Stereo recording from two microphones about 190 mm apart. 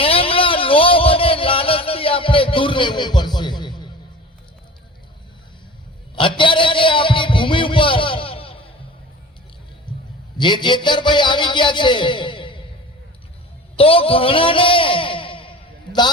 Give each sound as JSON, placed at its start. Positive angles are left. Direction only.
{"t": 0.0, "sound": "a sound", "side_deg": 30}
{"t": 6.1, "sound": "music", "side_deg": 25}
{"t": 10.3, "sound": "a man's voice", "side_deg": 25}
{"t": 13.7, "sound": "a man's voice", "side_deg": 30}